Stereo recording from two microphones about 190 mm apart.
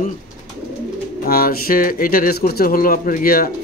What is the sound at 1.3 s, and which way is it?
Speech, 50° left (ahead or behind).